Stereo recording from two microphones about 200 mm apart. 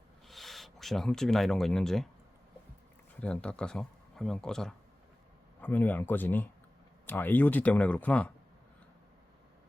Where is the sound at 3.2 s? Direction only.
5° left (ahead or behind).